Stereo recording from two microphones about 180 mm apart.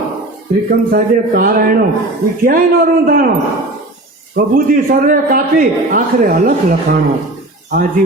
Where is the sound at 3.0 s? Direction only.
55° right (ahead or behind).